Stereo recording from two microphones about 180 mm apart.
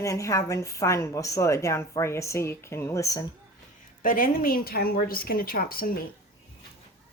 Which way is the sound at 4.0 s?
50° left (ahead or behind).